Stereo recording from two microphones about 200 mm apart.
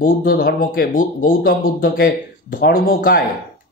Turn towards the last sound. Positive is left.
turn(degrees=45)  # may be behind; listen again after turning